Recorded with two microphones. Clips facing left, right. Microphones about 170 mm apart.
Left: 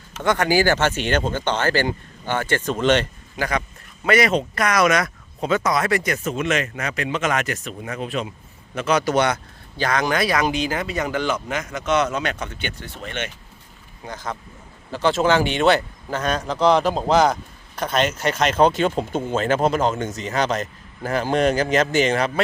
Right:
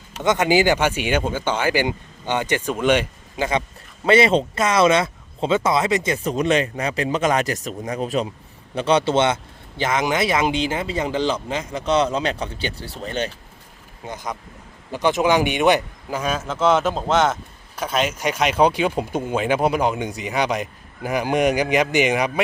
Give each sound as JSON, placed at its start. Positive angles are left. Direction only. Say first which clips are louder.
{"t": 0.2, "sound": "speech", "louder": "right 1 dB", "side_deg": -20}
{"t": 3.3, "sound": "a man's voice", "louder": "right 2 dB", "side_deg": -20}
{"t": 14.0, "sound": "a man's voice", "louder": "right 1 dB", "side_deg": -20}